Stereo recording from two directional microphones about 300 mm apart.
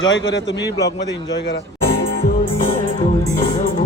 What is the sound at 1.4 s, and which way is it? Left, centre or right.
Music, left.